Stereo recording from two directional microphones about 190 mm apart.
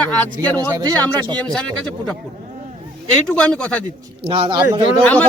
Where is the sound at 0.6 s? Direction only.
20° right (ahead or behind).